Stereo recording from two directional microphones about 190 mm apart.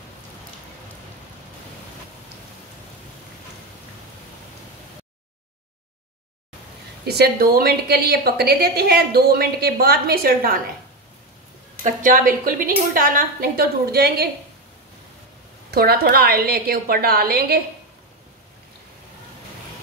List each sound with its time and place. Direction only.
7.1 s a woman's voice: 55° right (ahead or behind)
11.8 s a woman's voice: 45° right (ahead or behind)
15.7 s a woman's voice: 55° right (ahead or behind)